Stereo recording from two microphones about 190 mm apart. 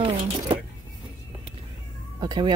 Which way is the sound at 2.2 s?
25° right (ahead or behind).